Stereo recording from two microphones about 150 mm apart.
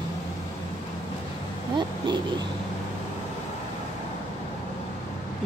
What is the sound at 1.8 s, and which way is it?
Speech, 30° right (ahead or behind).